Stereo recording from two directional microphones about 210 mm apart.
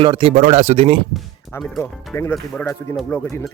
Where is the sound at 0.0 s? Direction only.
25° right (ahead or behind).